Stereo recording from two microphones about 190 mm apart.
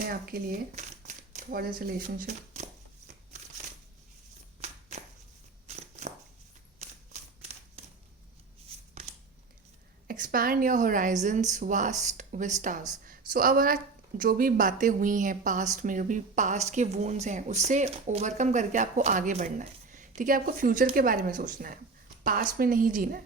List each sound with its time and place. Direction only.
0.1 s speech: 50° right (ahead or behind)
4.6 s a sound: 35° right (ahead or behind)
6.7 s typewriter: 35° right (ahead or behind)
10.1 s a woman's voice: 50° right (ahead or behind)